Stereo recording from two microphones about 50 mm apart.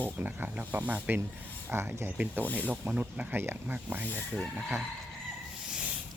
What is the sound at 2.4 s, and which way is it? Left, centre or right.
Speech, left.